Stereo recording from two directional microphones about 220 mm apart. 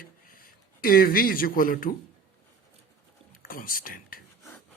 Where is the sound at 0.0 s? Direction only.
40° left (ahead or behind).